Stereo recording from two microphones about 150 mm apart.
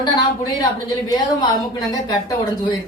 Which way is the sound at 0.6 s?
25° left (ahead or behind).